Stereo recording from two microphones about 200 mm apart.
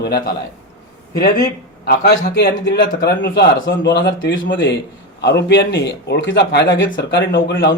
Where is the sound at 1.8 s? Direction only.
55° left (ahead or behind).